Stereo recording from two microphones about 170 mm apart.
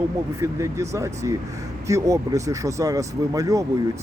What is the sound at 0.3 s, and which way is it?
Speech, 15° right (ahead or behind).